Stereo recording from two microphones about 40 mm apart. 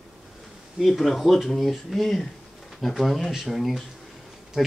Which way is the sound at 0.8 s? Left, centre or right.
Centre.